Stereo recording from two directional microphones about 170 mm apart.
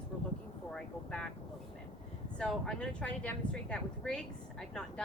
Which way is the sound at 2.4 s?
5° left (ahead or behind).